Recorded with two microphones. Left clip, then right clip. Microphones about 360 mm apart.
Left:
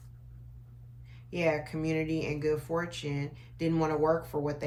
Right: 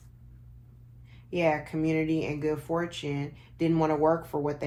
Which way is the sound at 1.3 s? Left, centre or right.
Centre.